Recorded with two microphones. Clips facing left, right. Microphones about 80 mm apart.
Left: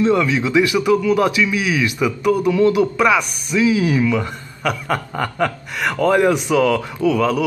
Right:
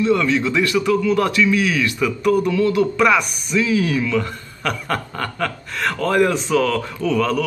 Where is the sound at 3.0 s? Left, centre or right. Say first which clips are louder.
Even; centre.